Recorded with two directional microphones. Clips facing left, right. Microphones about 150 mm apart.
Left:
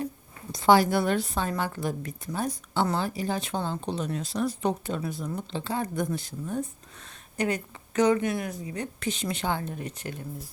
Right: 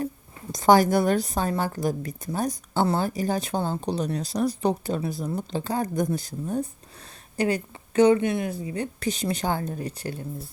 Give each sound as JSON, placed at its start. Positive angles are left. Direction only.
{"t": 0.5, "sound": "a woman's voice", "side_deg": -45}